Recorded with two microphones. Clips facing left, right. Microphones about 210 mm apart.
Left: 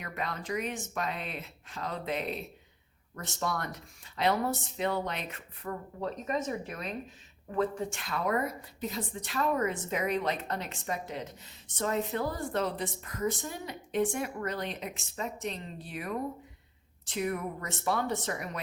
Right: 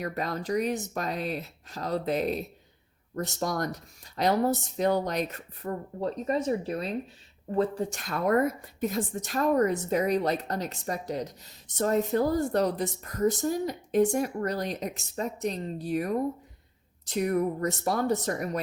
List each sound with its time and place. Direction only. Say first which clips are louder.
0.0 s a woman's voice: right 6 dB; 40° right (ahead or behind)